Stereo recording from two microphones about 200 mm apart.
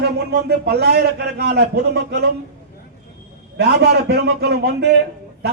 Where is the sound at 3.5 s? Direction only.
55° right (ahead or behind).